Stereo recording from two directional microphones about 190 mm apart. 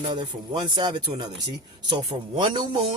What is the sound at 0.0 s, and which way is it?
Speech, 25° right (ahead or behind).